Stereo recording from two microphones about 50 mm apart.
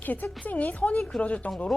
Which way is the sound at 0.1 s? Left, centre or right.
Left.